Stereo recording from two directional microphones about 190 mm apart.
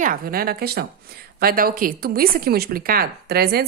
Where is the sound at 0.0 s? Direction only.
45° right (ahead or behind).